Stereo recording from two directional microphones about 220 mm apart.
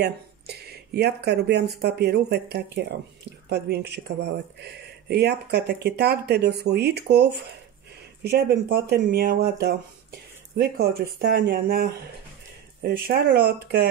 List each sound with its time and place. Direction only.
0.0 s speech: 45° right (ahead or behind)
10.9 s speech: 45° right (ahead or behind)